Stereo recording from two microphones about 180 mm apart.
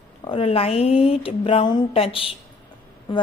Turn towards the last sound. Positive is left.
turn(degrees=25)  # may be behind; listen again after turning